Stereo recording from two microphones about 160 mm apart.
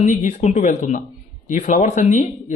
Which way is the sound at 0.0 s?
50° left (ahead or behind).